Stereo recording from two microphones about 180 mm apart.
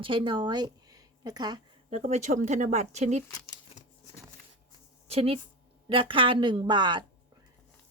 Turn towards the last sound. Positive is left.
turn(degrees=-25)  # may be behind; listen again after turning